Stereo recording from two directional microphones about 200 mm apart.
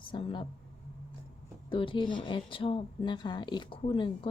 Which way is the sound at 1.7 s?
25° left (ahead or behind).